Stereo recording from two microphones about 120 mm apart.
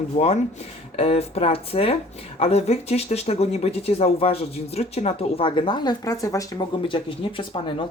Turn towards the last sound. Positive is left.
turn(degrees=45)  # may be behind; listen again after turning